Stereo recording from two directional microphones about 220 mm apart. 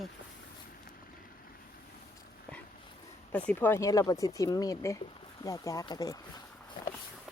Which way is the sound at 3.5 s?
10° left (ahead or behind).